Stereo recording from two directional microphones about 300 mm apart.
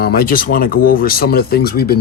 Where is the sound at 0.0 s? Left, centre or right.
Left.